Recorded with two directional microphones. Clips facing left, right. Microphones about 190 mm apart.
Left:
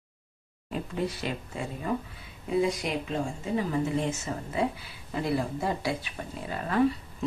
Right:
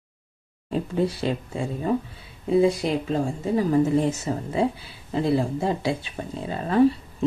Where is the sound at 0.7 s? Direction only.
30° right (ahead or behind).